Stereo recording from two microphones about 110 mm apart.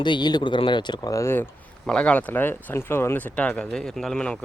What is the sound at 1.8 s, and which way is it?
Speech, 10° left (ahead or behind).